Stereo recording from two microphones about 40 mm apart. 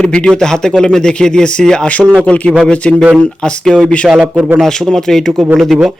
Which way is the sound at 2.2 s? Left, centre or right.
Left.